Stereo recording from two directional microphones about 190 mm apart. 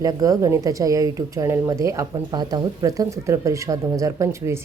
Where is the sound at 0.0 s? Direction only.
20° right (ahead or behind).